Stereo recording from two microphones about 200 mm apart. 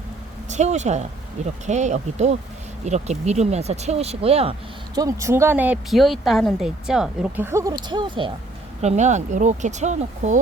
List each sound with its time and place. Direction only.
0.4 s speech: 35° right (ahead or behind)
4.9 s speech: 15° right (ahead or behind)
8.8 s speech: 35° right (ahead or behind)